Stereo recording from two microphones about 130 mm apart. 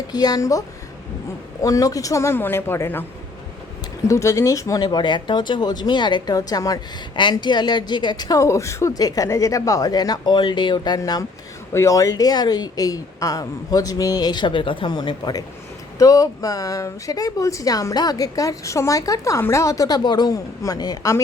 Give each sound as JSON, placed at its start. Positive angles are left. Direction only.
{"t": 0.1, "sound": "speech", "side_deg": 30}
{"t": 1.6, "sound": "speech", "side_deg": 25}
{"t": 4.1, "sound": "a woman's voice", "side_deg": 25}